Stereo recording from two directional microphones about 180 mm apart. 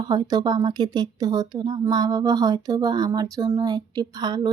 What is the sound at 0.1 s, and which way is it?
Speech, 25° right (ahead or behind).